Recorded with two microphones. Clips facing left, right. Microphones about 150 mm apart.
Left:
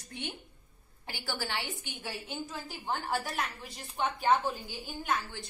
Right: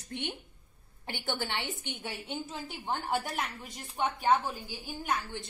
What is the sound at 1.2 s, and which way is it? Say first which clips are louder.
A woman's voice: right 1 dB; 20° right (ahead or behind).